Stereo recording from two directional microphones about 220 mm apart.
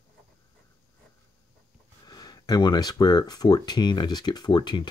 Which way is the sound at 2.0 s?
20° left (ahead or behind).